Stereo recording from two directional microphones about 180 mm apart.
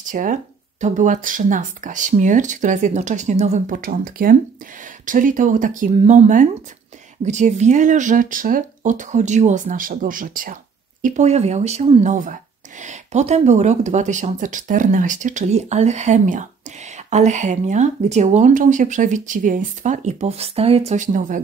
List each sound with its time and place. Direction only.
0.0 s speech: 45° right (ahead or behind)